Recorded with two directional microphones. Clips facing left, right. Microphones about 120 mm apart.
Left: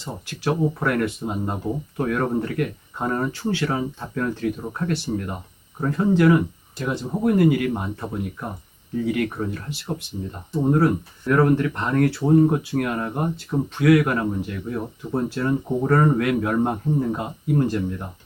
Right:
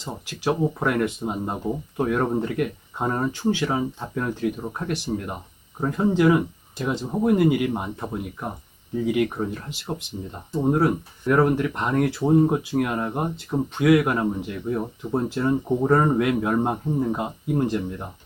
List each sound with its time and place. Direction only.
0.0 s speech: 15° right (ahead or behind)